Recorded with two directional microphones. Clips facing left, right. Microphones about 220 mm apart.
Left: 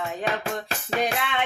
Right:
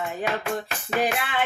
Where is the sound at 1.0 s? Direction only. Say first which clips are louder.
Right 1 dB; 5° right (ahead or behind).